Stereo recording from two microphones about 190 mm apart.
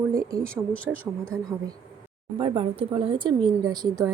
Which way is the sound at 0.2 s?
15° right (ahead or behind).